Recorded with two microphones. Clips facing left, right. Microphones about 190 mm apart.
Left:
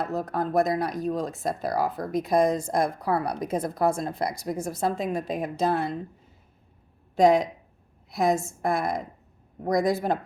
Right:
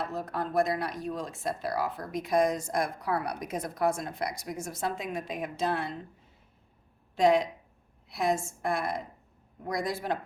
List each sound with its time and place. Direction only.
0.0 s a woman's voice: 40° left (ahead or behind)
7.2 s a woman's voice: 45° left (ahead or behind)